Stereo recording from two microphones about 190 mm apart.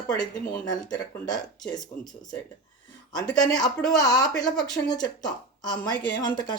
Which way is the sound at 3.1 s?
20° left (ahead or behind).